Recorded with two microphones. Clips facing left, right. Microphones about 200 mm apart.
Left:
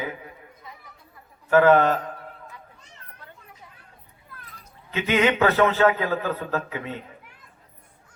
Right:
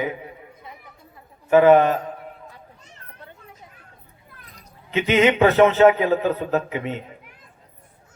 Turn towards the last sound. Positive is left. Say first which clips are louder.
# right 5 dB
turn(degrees=-20)  # may be behind; listen again after turning